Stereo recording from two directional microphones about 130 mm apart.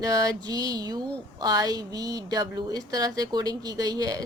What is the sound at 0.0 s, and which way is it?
A woman's voice, 30° right (ahead or behind).